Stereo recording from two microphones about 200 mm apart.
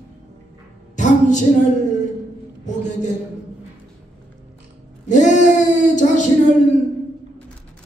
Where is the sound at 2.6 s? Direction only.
35° left (ahead or behind).